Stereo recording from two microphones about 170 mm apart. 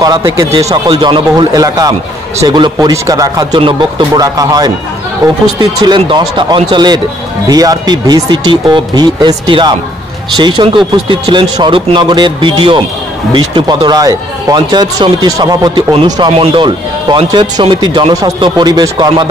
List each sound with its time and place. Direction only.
0.0 s speech: 20° right (ahead or behind)